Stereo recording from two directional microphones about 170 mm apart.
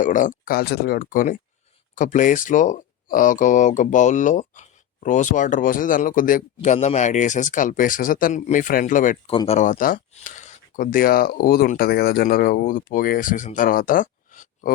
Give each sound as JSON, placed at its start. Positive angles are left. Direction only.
{"t": 0.0, "sound": "speech", "side_deg": 50}
{"t": 9.3, "sound": "speech", "side_deg": 30}
{"t": 9.6, "sound": "speech", "side_deg": 50}